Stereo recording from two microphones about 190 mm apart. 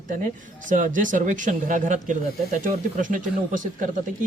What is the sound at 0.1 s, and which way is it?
Speech, 45° right (ahead or behind).